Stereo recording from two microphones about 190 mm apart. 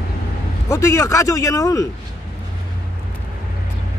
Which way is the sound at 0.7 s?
15° left (ahead or behind).